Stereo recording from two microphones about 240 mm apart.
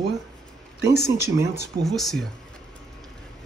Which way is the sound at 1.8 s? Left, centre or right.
Centre.